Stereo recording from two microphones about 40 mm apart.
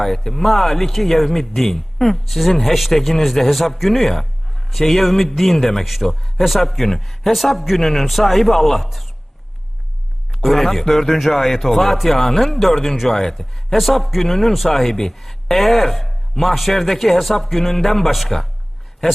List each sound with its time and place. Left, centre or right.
0.2 s speech: centre
10.4 s speech: centre